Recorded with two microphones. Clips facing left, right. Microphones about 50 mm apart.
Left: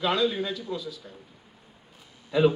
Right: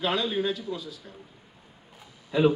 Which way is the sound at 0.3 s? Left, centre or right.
Right.